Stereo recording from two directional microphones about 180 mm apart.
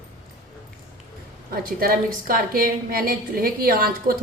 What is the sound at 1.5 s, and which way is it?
A woman's voice, 55° right (ahead or behind).